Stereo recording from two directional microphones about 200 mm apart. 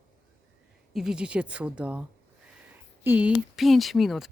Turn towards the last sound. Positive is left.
turn(degrees=0)  # may be behind; listen again after turning